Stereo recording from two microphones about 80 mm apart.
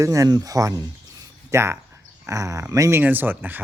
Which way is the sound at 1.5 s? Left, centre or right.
Right.